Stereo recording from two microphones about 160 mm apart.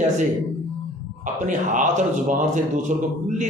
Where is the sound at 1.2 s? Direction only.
50° right (ahead or behind).